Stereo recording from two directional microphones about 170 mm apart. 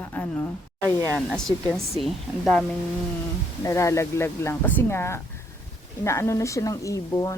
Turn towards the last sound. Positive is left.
turn(degrees=20)  # may be behind; listen again after turning